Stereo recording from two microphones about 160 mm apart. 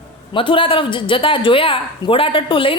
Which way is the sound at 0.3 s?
30° left (ahead or behind).